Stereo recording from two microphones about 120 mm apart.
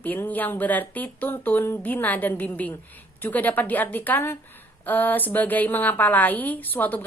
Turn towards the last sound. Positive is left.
turn(degrees=15)  # may be behind; listen again after turning